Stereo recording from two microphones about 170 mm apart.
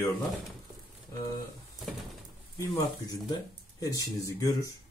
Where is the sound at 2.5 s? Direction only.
25° left (ahead or behind).